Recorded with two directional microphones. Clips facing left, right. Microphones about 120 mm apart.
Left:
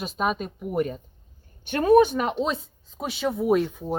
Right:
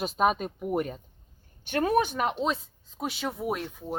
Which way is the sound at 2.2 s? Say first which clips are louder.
Left 2 dB; centre (ahead or behind).